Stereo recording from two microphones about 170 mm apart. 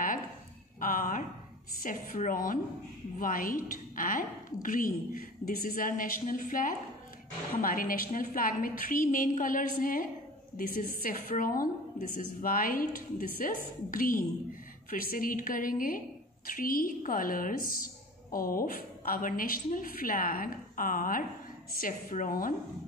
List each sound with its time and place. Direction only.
0.7 s a sound: 55° left (ahead or behind)
1.8 s a woman's voice: 50° left (ahead or behind)
11.1 s a woman's voice: 55° left (ahead or behind)